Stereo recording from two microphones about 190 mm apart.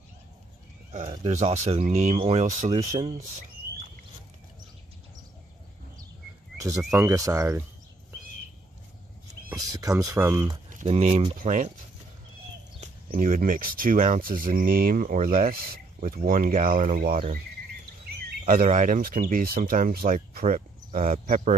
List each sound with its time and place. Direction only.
1.0 s speech: 30° right (ahead or behind)
6.9 s speech: 15° right (ahead or behind)
9.5 s speech: 20° right (ahead or behind)
10.7 s speech: 35° right (ahead or behind)
11.3 s speech: 45° right (ahead or behind)
12.8 s speech: 45° right (ahead or behind)
18.4 s speech: 45° right (ahead or behind)